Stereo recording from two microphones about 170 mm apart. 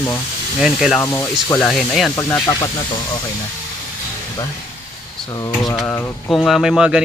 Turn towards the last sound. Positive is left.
turn(degrees=-5)  # may be behind; listen again after turning